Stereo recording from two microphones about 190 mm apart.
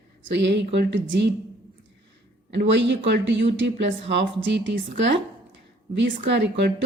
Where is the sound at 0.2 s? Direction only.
70° right (ahead or behind).